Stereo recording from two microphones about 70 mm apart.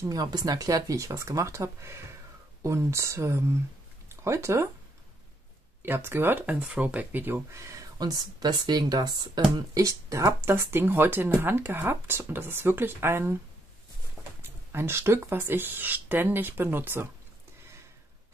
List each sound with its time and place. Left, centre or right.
0.1 s speech: right
5.8 s speech: right
7.5 s speech: right
8.0 s speech: right
9.6 s speech: right
10.4 s speech: right
14.2 s a sound: centre
14.7 s speech: right